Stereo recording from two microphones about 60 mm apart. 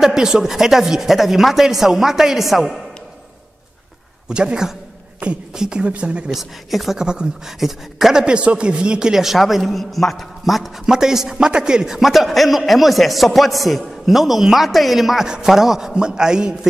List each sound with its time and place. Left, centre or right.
0.0 s speech: centre
4.3 s speech: centre
6.3 s speech: centre